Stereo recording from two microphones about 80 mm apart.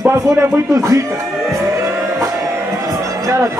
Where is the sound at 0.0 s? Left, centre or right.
Right.